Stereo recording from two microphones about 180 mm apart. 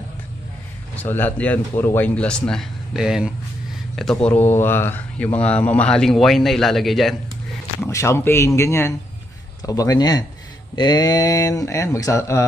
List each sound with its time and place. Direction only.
0.9 s speech: 10° left (ahead or behind)
7.8 s speech: 15° left (ahead or behind)